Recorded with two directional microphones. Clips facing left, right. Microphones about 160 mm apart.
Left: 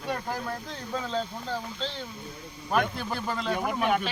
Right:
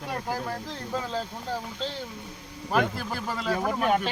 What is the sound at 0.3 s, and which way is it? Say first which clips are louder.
Speech: right 2 dB; 5° right (ahead or behind).